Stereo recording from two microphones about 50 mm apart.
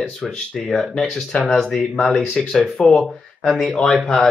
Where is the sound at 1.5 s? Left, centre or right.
Centre.